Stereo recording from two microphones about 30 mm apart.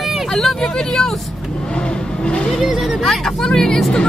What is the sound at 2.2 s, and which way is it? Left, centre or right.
Vehicle, left.